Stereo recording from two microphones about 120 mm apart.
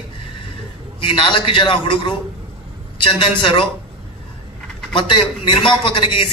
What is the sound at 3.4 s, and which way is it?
Speech, 40° left (ahead or behind).